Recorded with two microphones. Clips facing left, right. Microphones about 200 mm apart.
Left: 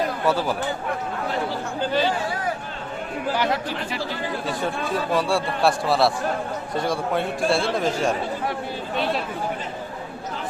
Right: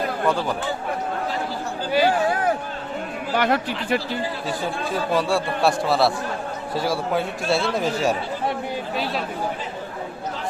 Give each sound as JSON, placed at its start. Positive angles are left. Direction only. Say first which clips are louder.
{"t": 0.3, "sound": "speech", "louder": "even", "side_deg": 5}
{"t": 1.9, "sound": "speech", "louder": "right 4 dB", "side_deg": -10}
{"t": 3.3, "sound": "speech", "louder": "right 5 dB", "side_deg": -60}
{"t": 4.4, "sound": "speech", "louder": "even", "side_deg": 0}